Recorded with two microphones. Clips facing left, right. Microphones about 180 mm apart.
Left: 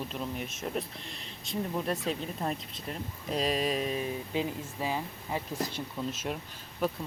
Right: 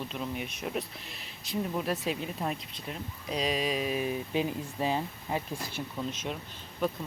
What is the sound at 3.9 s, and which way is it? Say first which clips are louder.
Speech: right 2 dB; 20° right (ahead or behind).